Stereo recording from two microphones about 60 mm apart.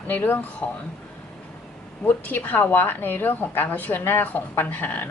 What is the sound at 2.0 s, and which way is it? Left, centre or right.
A woman's voice, left.